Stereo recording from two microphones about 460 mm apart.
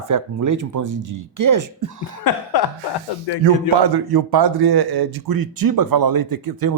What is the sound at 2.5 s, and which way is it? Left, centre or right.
Speech, left.